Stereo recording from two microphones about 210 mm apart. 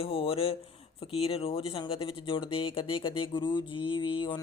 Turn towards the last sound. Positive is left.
turn(degrees=20)  # may be behind; listen again after turning